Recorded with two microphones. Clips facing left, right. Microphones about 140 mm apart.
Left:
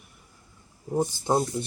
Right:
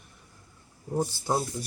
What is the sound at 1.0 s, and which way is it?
Speech, 20° left (ahead or behind).